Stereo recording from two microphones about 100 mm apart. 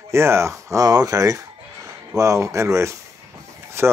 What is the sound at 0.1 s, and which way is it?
Speech, 25° right (ahead or behind).